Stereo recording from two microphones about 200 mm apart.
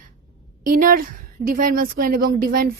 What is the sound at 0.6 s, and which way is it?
A woman's voice, 45° right (ahead or behind).